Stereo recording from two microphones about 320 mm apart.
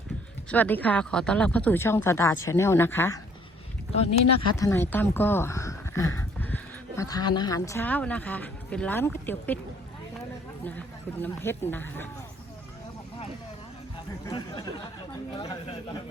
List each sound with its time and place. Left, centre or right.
0.5 s speech: centre
4.4 s speech: centre
10.6 s speech: centre
14.3 s speech: centre